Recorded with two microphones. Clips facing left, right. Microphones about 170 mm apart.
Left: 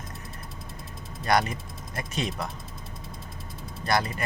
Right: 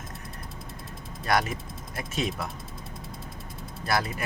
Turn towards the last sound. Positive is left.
turn(degrees=-5)  # may be behind; listen again after turning